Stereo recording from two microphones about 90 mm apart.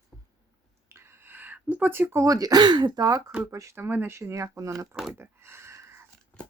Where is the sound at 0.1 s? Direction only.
5° left (ahead or behind).